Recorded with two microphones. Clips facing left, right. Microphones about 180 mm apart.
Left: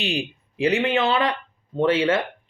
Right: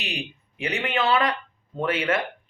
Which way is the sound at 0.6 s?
30° left (ahead or behind).